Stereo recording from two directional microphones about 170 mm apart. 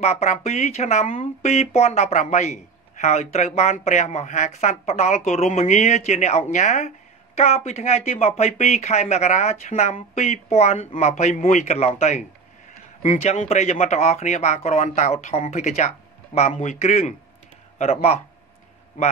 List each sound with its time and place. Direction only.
0.0 s speech: 40° left (ahead or behind)
19.0 s speech: 50° left (ahead or behind)